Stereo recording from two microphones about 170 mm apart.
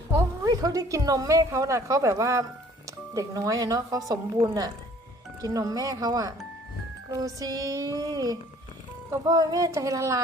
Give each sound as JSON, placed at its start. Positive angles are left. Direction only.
{"t": 0.1, "sound": "speech", "side_deg": -20}
{"t": 5.4, "sound": "speech", "side_deg": -20}